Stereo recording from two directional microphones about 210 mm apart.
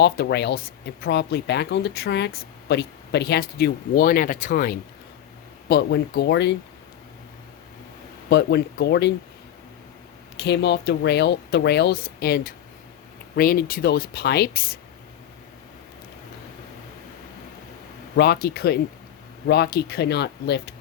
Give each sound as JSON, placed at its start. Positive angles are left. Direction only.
{"t": 0.0, "sound": "speech", "side_deg": 55}
{"t": 5.6, "sound": "speech", "side_deg": 50}
{"t": 8.3, "sound": "speech", "side_deg": 50}
{"t": 10.3, "sound": "speech", "side_deg": 55}
{"t": 18.2, "sound": "speech", "side_deg": 50}